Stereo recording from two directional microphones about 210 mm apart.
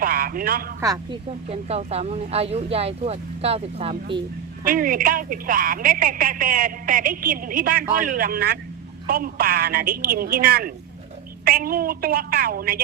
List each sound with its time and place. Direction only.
0.0 s a sound: 40° right (ahead or behind)
0.8 s speech: 15° right (ahead or behind)
1.5 s speech: 30° right (ahead or behind)
4.6 s a woman's voice: 40° right (ahead or behind)